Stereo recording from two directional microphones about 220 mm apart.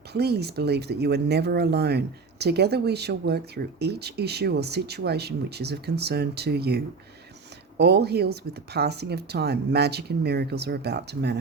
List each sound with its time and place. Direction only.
0.1 s speech: 45° right (ahead or behind)